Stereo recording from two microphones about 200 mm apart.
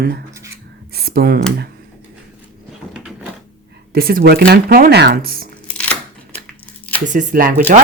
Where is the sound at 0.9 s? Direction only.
50° right (ahead or behind).